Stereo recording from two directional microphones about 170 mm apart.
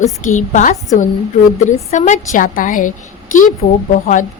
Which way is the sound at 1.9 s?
50° left (ahead or behind).